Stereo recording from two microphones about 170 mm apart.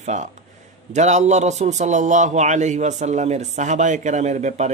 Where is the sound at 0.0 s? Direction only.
45° right (ahead or behind).